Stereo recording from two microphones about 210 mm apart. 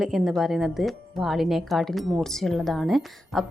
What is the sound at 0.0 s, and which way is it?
Speech, centre (ahead or behind).